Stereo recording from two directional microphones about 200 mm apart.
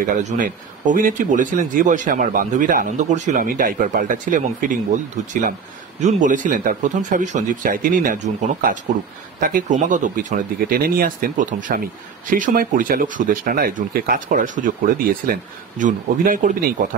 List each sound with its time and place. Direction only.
0.0 s speech: 40° right (ahead or behind)
5.9 s speech: 35° right (ahead or behind)